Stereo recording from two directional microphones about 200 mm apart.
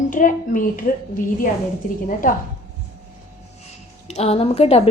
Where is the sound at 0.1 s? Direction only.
40° left (ahead or behind).